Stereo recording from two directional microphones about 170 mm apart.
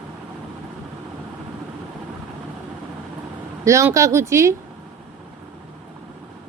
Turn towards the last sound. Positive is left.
turn(degrees=-15)  # may be behind; listen again after turning